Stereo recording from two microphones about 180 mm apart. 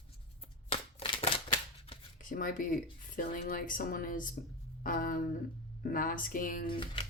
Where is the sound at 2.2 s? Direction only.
50° left (ahead or behind).